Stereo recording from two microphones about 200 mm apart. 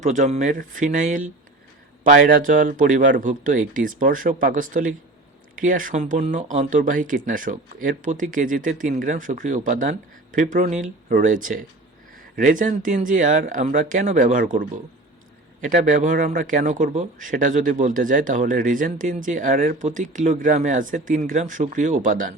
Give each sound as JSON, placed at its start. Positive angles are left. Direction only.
{"t": 0.0, "sound": "speech", "side_deg": -40}